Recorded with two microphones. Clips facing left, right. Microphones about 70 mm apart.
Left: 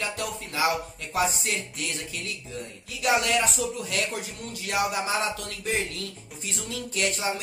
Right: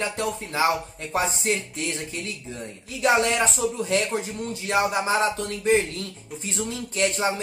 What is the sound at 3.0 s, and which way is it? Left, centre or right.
Speech, right.